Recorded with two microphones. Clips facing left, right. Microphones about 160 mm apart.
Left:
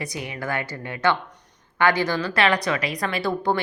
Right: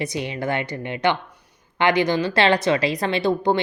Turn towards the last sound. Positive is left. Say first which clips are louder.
# right 4 dB
turn(degrees=-20)  # may be behind; listen again after turning